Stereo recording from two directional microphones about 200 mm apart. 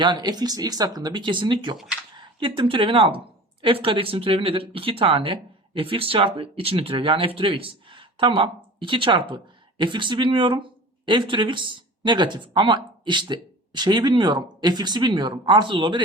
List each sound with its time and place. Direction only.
0.0 s a woman's voice: 20° right (ahead or behind)